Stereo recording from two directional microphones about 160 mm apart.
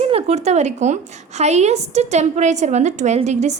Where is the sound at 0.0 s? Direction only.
40° right (ahead or behind).